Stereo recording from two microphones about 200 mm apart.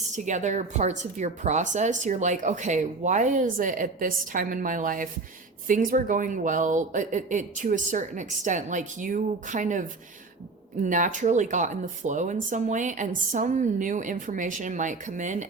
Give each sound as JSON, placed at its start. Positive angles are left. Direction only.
{"t": 0.1, "sound": "a woman's voice", "side_deg": -35}
{"t": 10.8, "sound": "a woman's voice", "side_deg": -40}